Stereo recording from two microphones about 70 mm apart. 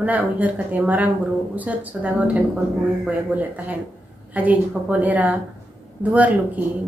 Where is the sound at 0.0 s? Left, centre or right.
Right.